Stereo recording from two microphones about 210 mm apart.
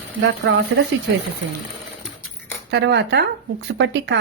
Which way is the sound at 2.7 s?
55° right (ahead or behind).